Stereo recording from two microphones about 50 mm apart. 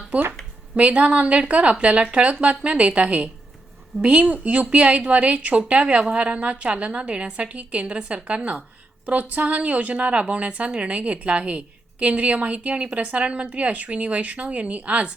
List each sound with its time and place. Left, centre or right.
0.8 s a woman's voice: right